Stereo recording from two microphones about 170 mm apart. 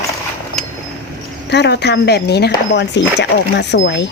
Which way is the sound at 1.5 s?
85° left.